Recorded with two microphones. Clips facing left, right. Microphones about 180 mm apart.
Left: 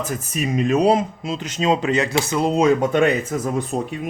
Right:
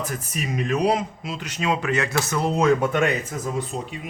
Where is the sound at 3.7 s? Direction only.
50° left (ahead or behind).